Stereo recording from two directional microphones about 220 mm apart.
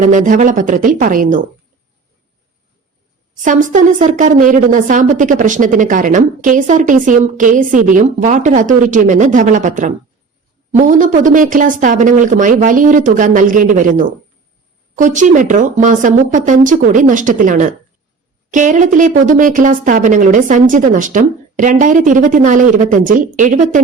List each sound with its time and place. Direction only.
0.0 s speech: 35° right (ahead or behind)
3.4 s speech: 35° right (ahead or behind)